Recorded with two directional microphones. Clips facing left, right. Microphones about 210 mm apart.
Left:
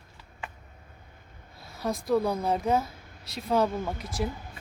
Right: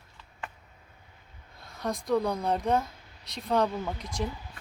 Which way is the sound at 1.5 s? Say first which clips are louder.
Left 2 dB; 5° left (ahead or behind).